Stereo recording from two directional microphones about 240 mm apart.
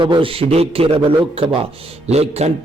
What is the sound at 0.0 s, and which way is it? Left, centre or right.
A man's voice, right.